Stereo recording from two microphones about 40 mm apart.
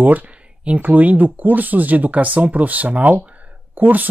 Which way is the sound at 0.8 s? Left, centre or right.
Right.